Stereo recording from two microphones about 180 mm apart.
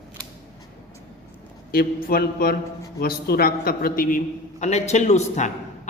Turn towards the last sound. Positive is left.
turn(degrees=40)  # may be behind; listen again after turning